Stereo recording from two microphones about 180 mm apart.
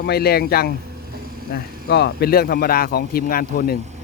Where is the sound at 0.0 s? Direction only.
60° left (ahead or behind).